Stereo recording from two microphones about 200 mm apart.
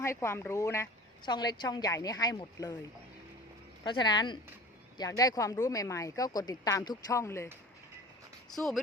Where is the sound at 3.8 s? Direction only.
20° left (ahead or behind).